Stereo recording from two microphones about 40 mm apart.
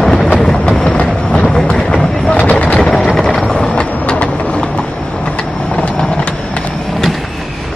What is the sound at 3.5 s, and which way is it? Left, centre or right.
Vehicle, left.